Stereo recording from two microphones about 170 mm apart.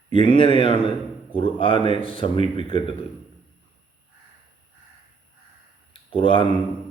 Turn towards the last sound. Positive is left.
turn(degrees=30)  # may be behind; listen again after turning